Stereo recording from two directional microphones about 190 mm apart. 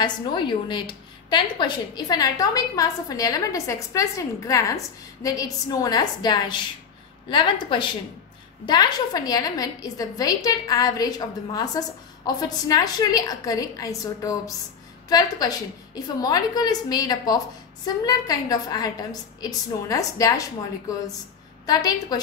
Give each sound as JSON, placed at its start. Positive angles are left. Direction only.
{"t": 0.0, "sound": "a woman's voice", "side_deg": 25}
{"t": 21.6, "sound": "a woman's voice", "side_deg": 20}